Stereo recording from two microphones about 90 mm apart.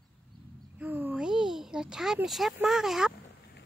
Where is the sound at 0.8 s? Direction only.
20° right (ahead or behind).